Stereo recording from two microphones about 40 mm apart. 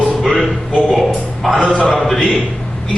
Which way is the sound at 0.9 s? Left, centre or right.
Centre.